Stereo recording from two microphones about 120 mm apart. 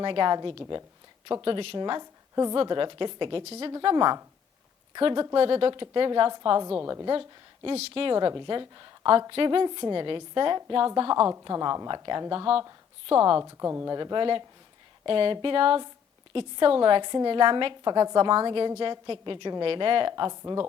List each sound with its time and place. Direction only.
0.0 s a woman's voice: 40° right (ahead or behind)
2.6 s a woman's voice: 40° right (ahead or behind)
3.4 s a woman's voice: 60° right (ahead or behind)
3.8 s a woman's voice: 40° right (ahead or behind)
7.1 s a woman's voice: 45° right (ahead or behind)
8.4 s a woman's voice: 40° right (ahead or behind)
13.1 s a woman's voice: 45° right (ahead or behind)
13.4 s a woman's voice: 25° right (ahead or behind)
20.3 s speech: 25° right (ahead or behind)